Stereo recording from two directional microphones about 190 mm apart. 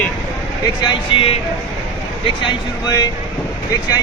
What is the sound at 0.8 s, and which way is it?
Speech, 25° left (ahead or behind).